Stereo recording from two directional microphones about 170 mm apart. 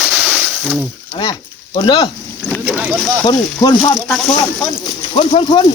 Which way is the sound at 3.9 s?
5° left (ahead or behind).